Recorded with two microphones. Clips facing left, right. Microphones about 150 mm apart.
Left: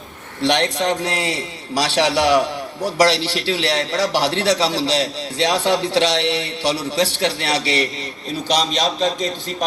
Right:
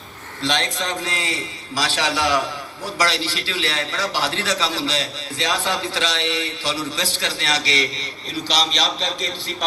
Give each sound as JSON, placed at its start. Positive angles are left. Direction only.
{"t": 0.4, "sound": "a man's voice", "side_deg": 65}